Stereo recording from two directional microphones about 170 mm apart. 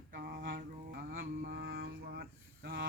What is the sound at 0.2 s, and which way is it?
Mantra, 65° right (ahead or behind).